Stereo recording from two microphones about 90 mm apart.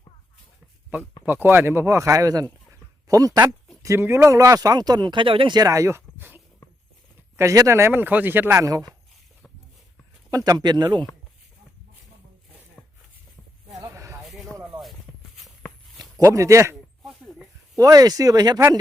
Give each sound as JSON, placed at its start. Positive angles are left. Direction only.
{"t": 1.2, "sound": "speech", "side_deg": -20}
{"t": 3.8, "sound": "speech", "side_deg": -30}
{"t": 5.5, "sound": "speech", "side_deg": -40}
{"t": 6.1, "sound": "a sound", "side_deg": -25}
{"t": 7.3, "sound": "speech", "side_deg": -35}
{"t": 8.6, "sound": "speech", "side_deg": -40}
{"t": 10.3, "sound": "speech", "side_deg": -45}
{"t": 13.7, "sound": "a sound", "side_deg": -35}
{"t": 14.6, "sound": "a sound", "side_deg": 0}
{"t": 16.2, "sound": "speech", "side_deg": -35}
{"t": 17.0, "sound": "a sound", "side_deg": 0}
{"t": 17.7, "sound": "speech", "side_deg": -45}